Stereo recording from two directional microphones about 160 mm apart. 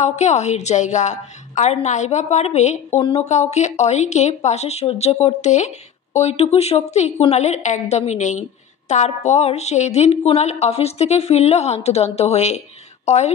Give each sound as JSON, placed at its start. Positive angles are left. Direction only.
{"t": 0.0, "sound": "a woman's voice", "side_deg": 45}